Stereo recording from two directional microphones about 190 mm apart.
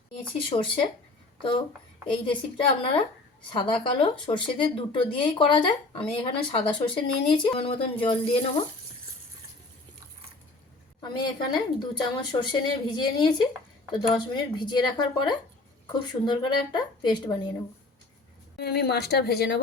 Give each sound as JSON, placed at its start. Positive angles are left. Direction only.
{"t": 0.2, "sound": "speech", "side_deg": 25}
{"t": 11.0, "sound": "speech", "side_deg": 25}
{"t": 18.5, "sound": "speech", "side_deg": 55}